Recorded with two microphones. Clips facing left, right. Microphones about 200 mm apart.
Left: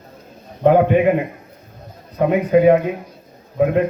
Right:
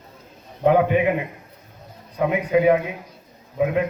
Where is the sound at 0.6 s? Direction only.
40° left (ahead or behind).